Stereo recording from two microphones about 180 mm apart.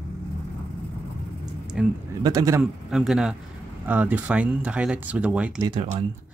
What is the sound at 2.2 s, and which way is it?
Speech, 20° right (ahead or behind).